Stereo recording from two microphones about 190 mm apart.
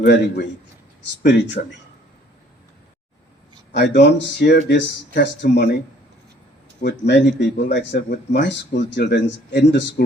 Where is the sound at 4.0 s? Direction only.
60° left (ahead or behind).